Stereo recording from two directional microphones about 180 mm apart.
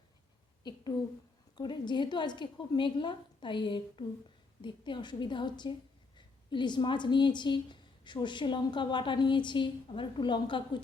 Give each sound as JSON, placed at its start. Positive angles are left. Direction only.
{"t": 1.5, "sound": "a woman's voice", "side_deg": 25}